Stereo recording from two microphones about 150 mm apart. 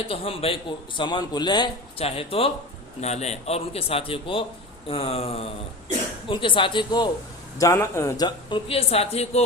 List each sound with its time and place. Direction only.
0.1 s a man's voice: 40° left (ahead or behind)
7.6 s a man's voice: 20° left (ahead or behind); by 9.4 s 45° left (ahead or behind)